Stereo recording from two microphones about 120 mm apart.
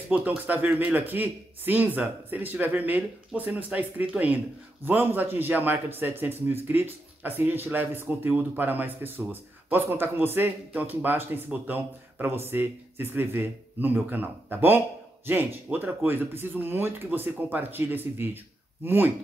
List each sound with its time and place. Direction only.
0.5 s a man's voice: 15° right (ahead or behind)